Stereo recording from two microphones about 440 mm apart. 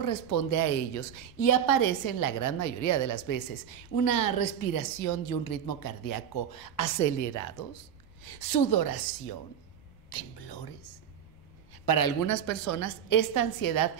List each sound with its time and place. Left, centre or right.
0.0 s a woman's voice: left
8.2 s a woman's voice: left
10.0 s a woman's voice: left
11.8 s a woman's voice: left